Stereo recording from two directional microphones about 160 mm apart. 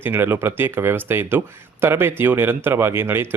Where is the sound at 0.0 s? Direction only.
15° right (ahead or behind).